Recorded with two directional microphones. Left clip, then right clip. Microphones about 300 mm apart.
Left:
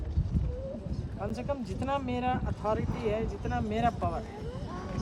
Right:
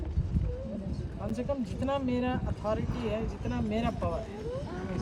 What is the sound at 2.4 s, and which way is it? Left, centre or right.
Speech, left.